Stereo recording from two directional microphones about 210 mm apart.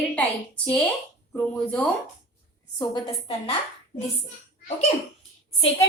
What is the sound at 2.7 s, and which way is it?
Speech, 20° left (ahead or behind).